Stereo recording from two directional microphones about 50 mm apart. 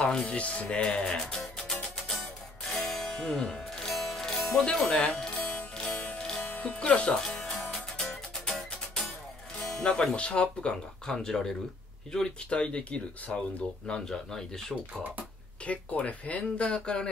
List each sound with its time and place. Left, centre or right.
0.0 s speech: centre
0.9 s speech: centre
2.6 s music: centre
6.5 s music: left
6.8 s speech: left
7.2 s music: centre
10.1 s speech: left
13.8 s speech: centre
15.6 s speech: left